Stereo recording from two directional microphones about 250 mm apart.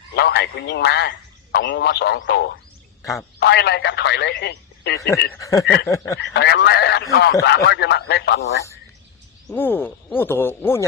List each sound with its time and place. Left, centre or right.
0.1 s a man's voice: left
3.0 s speech: centre
3.4 s speech: left
4.9 s speech: centre
6.1 s speech: left
9.5 s speech: centre